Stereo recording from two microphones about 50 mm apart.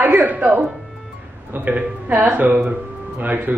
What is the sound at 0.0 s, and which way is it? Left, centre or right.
A woman's voice, right.